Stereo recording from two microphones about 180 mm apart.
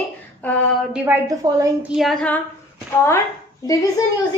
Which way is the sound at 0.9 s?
10° right (ahead or behind).